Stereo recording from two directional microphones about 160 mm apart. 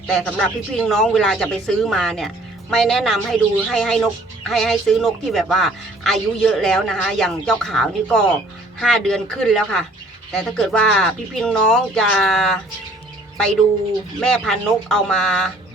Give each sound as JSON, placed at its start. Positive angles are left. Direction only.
{"t": 0.1, "sound": "speech", "side_deg": 5}
{"t": 14.2, "sound": "speech", "side_deg": 5}